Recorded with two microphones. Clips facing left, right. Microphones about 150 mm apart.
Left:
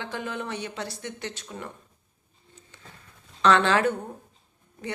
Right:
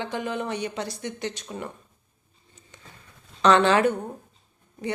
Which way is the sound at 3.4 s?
20° right (ahead or behind).